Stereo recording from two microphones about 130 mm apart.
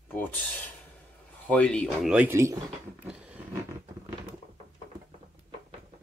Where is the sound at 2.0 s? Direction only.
10° right (ahead or behind).